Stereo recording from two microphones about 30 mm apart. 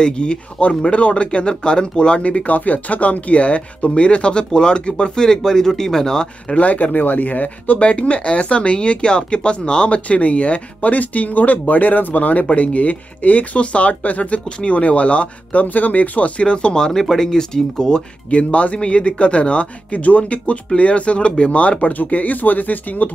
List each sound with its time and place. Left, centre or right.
0.0 s speech: left
2.2 s speech: left; by 6.2 s centre
6.5 s speech: left
7.8 s speech: left
15.6 s speech: left
16.4 s speech: left
17.0 s speech: centre
18.3 s speech: left
21.9 s speech: left